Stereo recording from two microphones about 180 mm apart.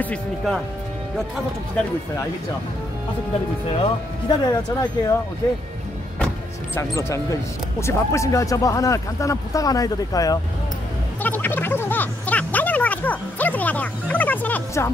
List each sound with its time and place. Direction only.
0.0 s speech: 5° left (ahead or behind)
3.7 s speech: 25° left (ahead or behind)
6.7 s speech: 15° left (ahead or behind)
11.2 s a sound: 10° left (ahead or behind)